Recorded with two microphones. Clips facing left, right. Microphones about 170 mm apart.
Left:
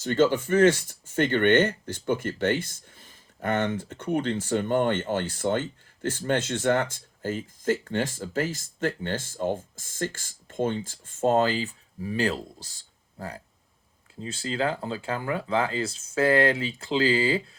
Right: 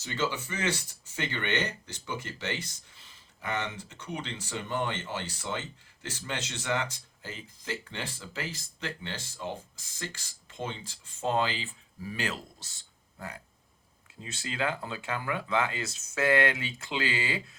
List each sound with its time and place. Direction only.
0.0 s speech: 50° left (ahead or behind); by 17.4 s 30° left (ahead or behind)